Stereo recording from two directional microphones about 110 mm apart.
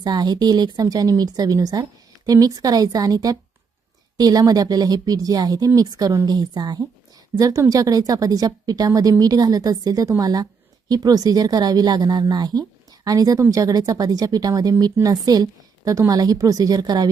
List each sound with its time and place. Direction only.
0.0 s a woman's voice: 40° right (ahead or behind)